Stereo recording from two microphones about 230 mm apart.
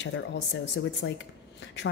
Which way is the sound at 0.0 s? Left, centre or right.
Left.